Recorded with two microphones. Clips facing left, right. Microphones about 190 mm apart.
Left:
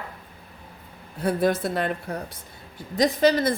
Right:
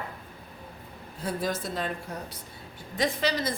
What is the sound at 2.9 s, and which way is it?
Speech, 45° left (ahead or behind).